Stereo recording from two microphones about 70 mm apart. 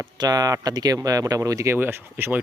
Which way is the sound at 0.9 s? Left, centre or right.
Right.